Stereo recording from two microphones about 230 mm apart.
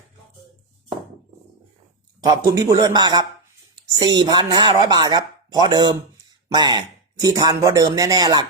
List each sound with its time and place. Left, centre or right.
2.2 s speech: centre